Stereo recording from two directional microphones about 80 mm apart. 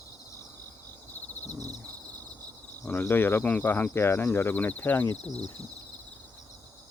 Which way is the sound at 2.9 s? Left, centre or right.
Left.